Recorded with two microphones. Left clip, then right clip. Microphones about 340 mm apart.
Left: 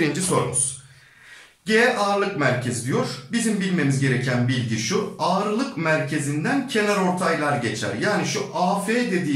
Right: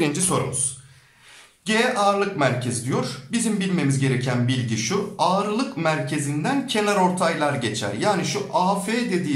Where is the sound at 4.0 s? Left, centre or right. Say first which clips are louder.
Left 1 dB; centre.